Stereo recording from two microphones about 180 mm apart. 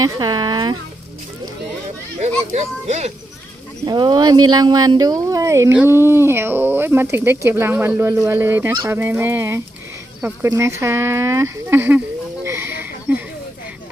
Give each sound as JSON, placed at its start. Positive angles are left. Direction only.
{"t": 0.0, "sound": "speech", "side_deg": -20}
{"t": 2.5, "sound": "speech", "side_deg": -40}
{"t": 3.8, "sound": "speech", "side_deg": -25}
{"t": 10.2, "sound": "a sound", "side_deg": -10}